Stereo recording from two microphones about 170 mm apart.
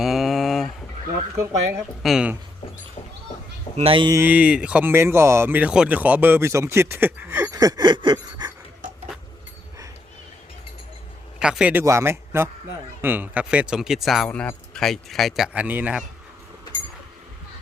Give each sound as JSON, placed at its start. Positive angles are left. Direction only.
{"t": 0.0, "sound": "a sound", "side_deg": 0}
{"t": 2.0, "sound": "speech", "side_deg": 0}
{"t": 3.8, "sound": "speech", "side_deg": -30}
{"t": 4.1, "sound": "speech", "side_deg": -10}
{"t": 11.3, "sound": "a man's voice", "side_deg": -5}